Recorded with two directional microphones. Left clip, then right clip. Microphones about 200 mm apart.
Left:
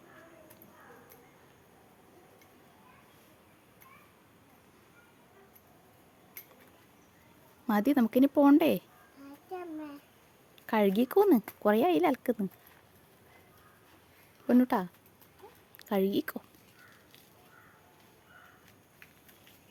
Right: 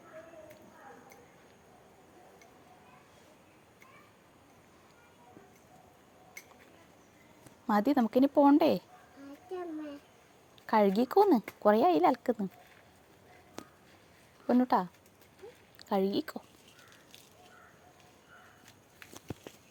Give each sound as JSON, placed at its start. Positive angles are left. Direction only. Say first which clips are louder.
{"t": 7.7, "sound": "a woman's voice", "louder": "even", "side_deg": 20}
{"t": 10.7, "sound": "a woman's voice", "louder": "right 1 dB", "side_deg": 20}
{"t": 14.4, "sound": "speech", "louder": "even", "side_deg": 25}